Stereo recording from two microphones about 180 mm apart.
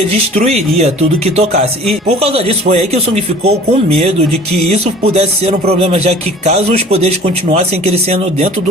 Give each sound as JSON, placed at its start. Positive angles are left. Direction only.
{"t": 0.3, "sound": "speech", "side_deg": -35}